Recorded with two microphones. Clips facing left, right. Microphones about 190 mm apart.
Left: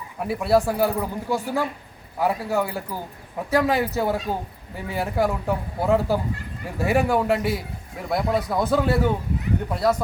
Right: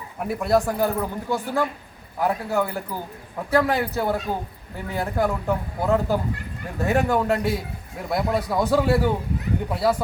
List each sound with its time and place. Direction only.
0.2 s a man's voice: 5° left (ahead or behind)